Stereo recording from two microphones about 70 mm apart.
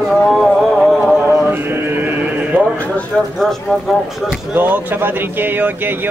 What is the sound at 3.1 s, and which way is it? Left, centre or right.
Speech, centre.